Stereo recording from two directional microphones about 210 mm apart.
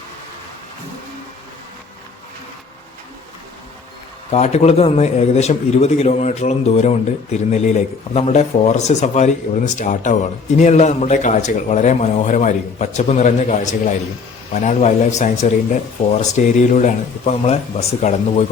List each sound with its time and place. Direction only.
4.3 s a man's voice: 30° left (ahead or behind)